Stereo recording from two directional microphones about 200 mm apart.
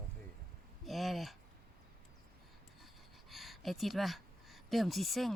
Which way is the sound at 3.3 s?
Centre (ahead or behind).